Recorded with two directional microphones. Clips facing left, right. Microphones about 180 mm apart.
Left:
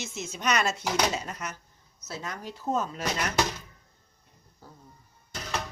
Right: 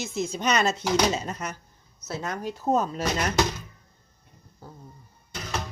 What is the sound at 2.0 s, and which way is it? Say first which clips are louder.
Speech: right 6 dB; 50° right (ahead or behind).